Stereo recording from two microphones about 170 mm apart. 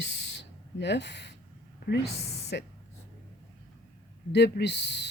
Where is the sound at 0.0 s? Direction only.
90° left.